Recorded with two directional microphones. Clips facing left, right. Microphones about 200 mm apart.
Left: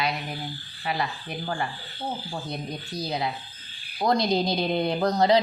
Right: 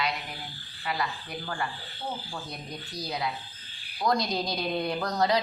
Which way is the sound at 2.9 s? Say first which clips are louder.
Left 3 dB; 25° left (ahead or behind).